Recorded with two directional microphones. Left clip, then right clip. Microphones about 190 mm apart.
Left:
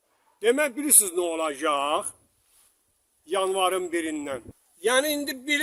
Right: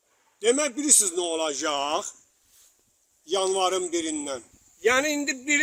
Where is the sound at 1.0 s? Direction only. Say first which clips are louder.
Even; 5° left (ahead or behind).